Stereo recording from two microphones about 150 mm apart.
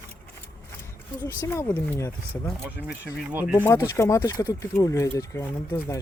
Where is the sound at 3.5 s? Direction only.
20° left (ahead or behind).